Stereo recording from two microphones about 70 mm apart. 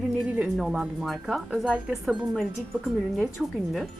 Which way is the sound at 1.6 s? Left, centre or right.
Centre.